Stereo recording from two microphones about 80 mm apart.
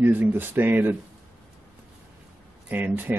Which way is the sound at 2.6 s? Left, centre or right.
Right.